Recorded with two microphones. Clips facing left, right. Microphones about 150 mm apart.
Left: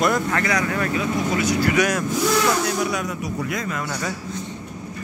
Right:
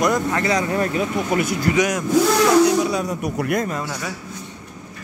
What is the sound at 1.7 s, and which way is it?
Speech, 15° right (ahead or behind).